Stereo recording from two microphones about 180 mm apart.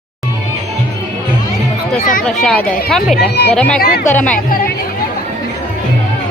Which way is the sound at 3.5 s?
5° left (ahead or behind).